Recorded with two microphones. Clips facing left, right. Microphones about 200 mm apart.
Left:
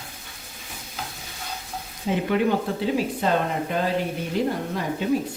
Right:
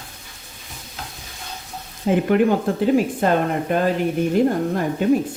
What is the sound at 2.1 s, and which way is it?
Speech, 50° right (ahead or behind).